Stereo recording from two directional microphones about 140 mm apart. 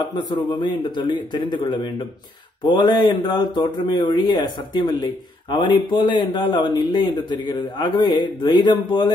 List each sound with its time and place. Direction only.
0.0 s speech: 30° left (ahead or behind)